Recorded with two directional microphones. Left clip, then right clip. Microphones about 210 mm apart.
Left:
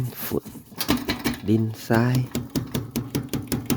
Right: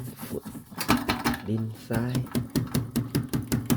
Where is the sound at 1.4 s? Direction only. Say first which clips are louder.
Left 9 dB; 45° left (ahead or behind).